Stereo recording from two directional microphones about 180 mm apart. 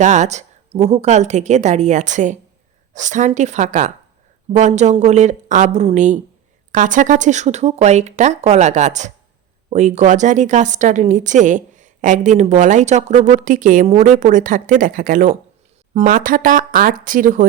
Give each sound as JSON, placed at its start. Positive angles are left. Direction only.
{"t": 0.0, "sound": "a woman's voice", "side_deg": -40}